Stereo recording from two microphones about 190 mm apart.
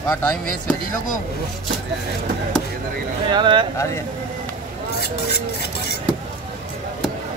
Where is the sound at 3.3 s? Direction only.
25° right (ahead or behind).